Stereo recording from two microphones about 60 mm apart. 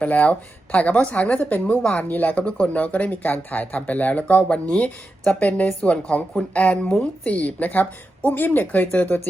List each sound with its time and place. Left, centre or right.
0.0 s speech: left
2.0 s speech: left
6.8 s speech: centre
7.3 s speech: left